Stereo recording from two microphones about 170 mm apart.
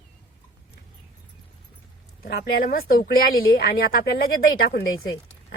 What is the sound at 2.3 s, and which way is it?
Speech, 65° left (ahead or behind).